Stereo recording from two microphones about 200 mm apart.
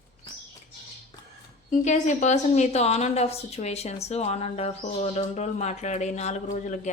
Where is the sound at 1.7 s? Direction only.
35° left (ahead or behind).